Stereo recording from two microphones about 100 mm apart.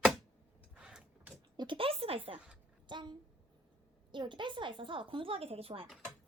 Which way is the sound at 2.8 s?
50° right (ahead or behind).